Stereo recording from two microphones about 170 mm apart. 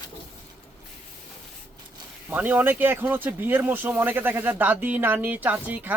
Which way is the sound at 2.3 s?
10° right (ahead or behind).